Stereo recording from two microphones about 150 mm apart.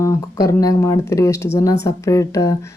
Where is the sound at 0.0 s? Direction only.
25° left (ahead or behind).